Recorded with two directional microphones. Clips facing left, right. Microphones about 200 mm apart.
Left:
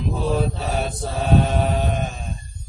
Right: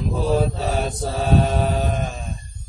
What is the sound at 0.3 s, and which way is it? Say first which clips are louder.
Mantra: right 3 dB; 40° right (ahead or behind).